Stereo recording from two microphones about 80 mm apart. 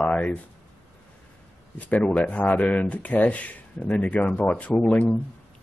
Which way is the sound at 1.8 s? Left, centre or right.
Centre.